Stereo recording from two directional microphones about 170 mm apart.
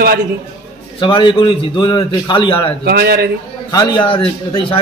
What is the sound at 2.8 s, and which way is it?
Speech, 65° right (ahead or behind).